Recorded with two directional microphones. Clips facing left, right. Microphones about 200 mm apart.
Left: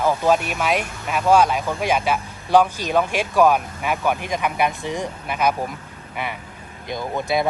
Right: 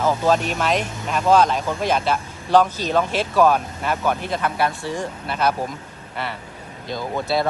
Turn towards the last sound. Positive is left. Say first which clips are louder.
# even
turn(degrees=15)  # may be behind; listen again after turning